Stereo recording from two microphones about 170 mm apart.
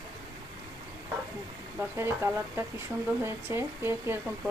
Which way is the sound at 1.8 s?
15° right (ahead or behind).